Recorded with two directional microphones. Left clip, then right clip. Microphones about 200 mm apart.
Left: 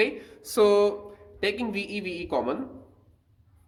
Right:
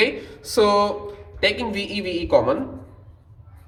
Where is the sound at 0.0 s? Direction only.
45° left (ahead or behind).